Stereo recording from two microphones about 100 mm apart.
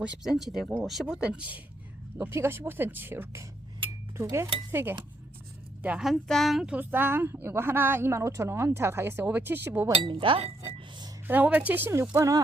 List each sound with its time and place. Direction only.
0.0 s a woman's voice: 10° right (ahead or behind)
3.8 s a sound: 25° right (ahead or behind)
4.7 s dishes: 20° right (ahead or behind)
6.0 s speech: centre (ahead or behind)
6.7 s a woman's voice: 20° right (ahead or behind)
10.0 s speech: 60° right (ahead or behind)
11.3 s a woman's voice: 15° right (ahead or behind)
12.1 s speech: 35° right (ahead or behind)